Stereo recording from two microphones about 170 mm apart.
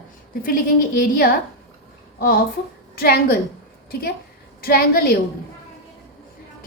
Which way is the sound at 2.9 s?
65° left (ahead or behind).